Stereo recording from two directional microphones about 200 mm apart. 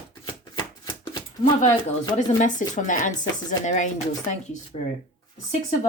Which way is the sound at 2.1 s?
35° left (ahead or behind).